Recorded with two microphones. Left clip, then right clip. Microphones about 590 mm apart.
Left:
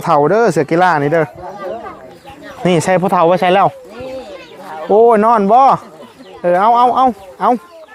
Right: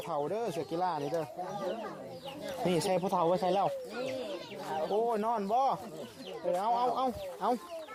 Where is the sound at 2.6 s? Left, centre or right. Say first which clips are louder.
Left 18 dB; left.